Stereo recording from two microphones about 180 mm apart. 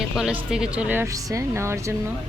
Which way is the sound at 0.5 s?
5° right (ahead or behind).